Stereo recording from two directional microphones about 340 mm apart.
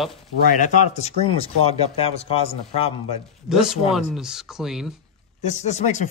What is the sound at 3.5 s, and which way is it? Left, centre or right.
Speech, centre.